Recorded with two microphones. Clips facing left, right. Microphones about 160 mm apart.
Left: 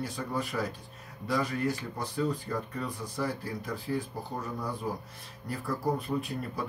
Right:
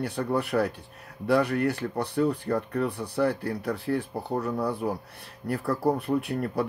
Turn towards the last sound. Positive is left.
turn(degrees=-65)  # may be behind; listen again after turning